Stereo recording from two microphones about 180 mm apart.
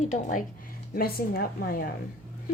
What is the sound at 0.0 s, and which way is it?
Speech, 45° left (ahead or behind).